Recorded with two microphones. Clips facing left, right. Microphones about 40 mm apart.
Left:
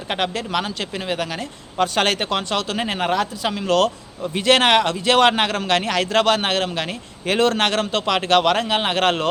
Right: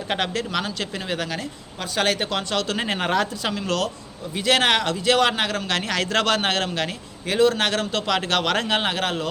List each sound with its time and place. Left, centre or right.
0.1 s speech: centre
1.8 s speech: left
2.1 s speech: left
2.7 s speech: centre
3.4 s speech: centre
4.4 s speech: left
5.9 s speech: centre
7.3 s speech: left
7.6 s speech: left
8.5 s a man's voice: centre
9.0 s speech: left